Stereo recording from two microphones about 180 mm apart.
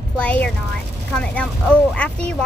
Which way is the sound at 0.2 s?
5° left (ahead or behind).